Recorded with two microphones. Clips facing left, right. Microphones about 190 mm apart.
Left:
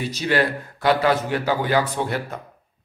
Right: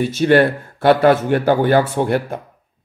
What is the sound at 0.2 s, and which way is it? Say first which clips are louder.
A man's voice: right 8 dB; 55° right (ahead or behind).